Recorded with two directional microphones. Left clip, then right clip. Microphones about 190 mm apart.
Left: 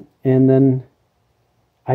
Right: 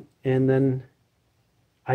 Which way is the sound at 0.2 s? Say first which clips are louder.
Left 8 dB; 55° left (ahead or behind).